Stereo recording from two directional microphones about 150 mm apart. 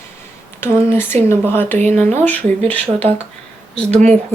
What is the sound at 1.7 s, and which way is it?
Speech, 50° right (ahead or behind).